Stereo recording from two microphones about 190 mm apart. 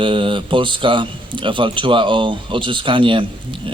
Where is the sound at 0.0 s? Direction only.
25° right (ahead or behind).